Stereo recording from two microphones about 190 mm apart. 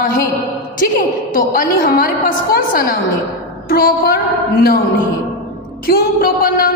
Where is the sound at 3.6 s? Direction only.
50° left (ahead or behind).